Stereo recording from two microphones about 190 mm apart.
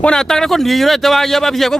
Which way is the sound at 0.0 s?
5° left (ahead or behind).